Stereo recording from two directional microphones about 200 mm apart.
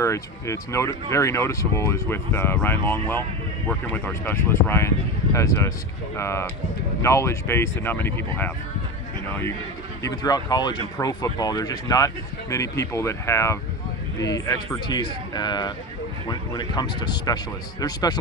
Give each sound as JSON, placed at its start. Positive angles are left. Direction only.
{"t": 0.0, "sound": "speech", "side_deg": 15}
{"t": 10.0, "sound": "speech", "side_deg": 20}